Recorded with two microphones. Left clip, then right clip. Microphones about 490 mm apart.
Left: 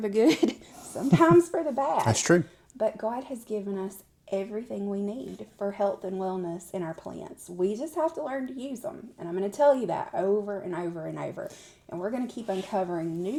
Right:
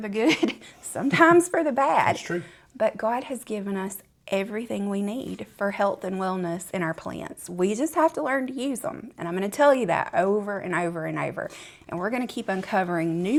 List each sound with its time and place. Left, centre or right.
0.0 s speech: centre
0.9 s speech: right
2.1 s speech: left
2.7 s speech: right